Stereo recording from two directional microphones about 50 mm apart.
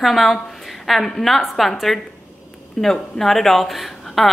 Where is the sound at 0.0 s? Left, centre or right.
Centre.